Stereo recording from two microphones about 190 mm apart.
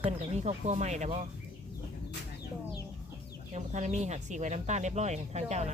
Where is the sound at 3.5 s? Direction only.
40° right (ahead or behind).